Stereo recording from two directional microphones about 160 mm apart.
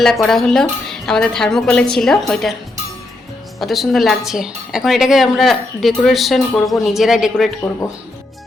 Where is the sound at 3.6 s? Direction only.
Centre (ahead or behind).